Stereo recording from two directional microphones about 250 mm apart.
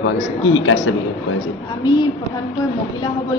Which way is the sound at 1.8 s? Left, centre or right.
Centre.